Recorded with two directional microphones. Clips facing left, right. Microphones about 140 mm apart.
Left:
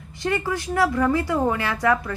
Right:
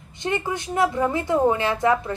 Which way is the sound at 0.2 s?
20° right (ahead or behind).